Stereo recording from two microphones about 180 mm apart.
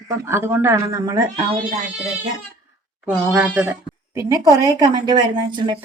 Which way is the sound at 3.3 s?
5° right (ahead or behind).